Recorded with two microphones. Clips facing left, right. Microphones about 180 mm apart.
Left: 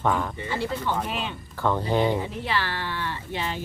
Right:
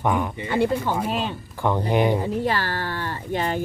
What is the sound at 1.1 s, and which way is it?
Speech, 40° right (ahead or behind).